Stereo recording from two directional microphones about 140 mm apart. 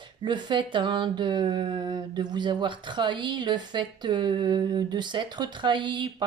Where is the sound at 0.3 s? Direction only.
35° right (ahead or behind).